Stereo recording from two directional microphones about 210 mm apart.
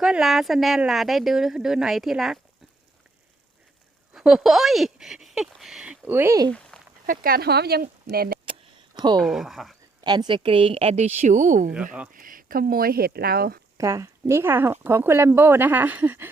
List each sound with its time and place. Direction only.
0.0 s speech: centre (ahead or behind)
4.1 s speech: centre (ahead or behind)
6.7 s a sound: 5° left (ahead or behind)
7.1 s speech: 45° right (ahead or behind)
9.0 s speech: 20° right (ahead or behind)
9.2 s speech: centre (ahead or behind)
10.0 s a woman's voice: 20° right (ahead or behind); by 13.6 s 45° right (ahead or behind)
13.7 s speech: 15° right (ahead or behind)